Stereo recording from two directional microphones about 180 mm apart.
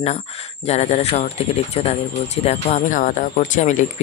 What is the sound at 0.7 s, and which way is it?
Speech, 40° left (ahead or behind).